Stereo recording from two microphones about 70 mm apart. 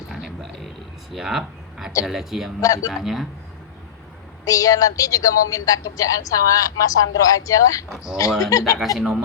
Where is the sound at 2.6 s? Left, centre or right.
Left.